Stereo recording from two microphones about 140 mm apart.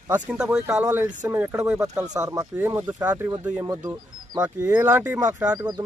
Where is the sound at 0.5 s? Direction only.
20° right (ahead or behind).